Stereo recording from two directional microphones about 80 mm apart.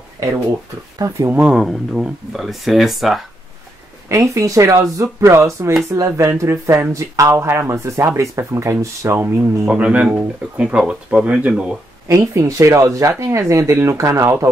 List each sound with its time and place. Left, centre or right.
0.2 s speech: right
1.3 s speech: centre
1.6 s speech: centre
4.1 s speech: right
9.7 s speech: centre
12.1 s speech: right